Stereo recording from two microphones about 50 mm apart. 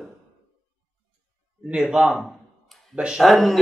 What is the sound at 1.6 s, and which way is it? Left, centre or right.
Speech, centre.